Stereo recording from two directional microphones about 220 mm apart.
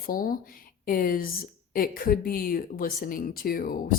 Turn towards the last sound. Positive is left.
turn(degrees=40)  # may be behind; listen again after turning